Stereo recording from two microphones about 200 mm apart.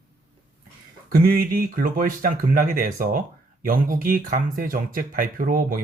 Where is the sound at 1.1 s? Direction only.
45° right (ahead or behind).